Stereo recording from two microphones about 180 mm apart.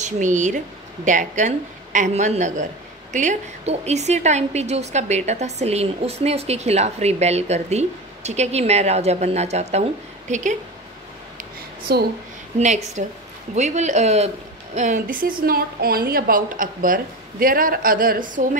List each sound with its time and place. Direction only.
0.0 s a woman's voice: 45° right (ahead or behind)
11.9 s a woman's voice: 60° right (ahead or behind)
12.5 s a woman's voice: 40° right (ahead or behind)